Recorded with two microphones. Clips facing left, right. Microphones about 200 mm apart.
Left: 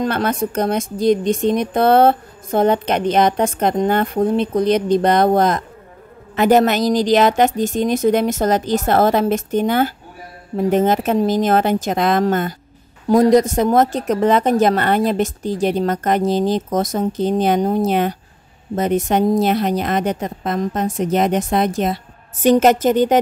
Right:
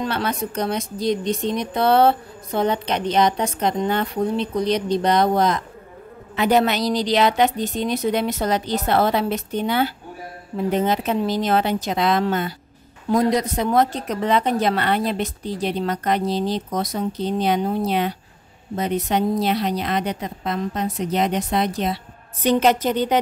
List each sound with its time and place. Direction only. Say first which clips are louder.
0.0 s speech: left 5 dB; 50° left (ahead or behind)